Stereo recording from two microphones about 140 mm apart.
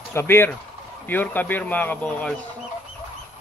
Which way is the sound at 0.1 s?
15° left (ahead or behind).